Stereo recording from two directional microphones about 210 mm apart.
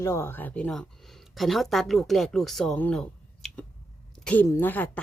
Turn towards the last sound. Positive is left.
turn(degrees=10)  # may be behind; listen again after turning